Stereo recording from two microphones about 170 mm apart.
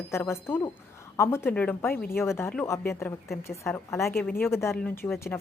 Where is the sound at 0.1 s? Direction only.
15° left (ahead or behind).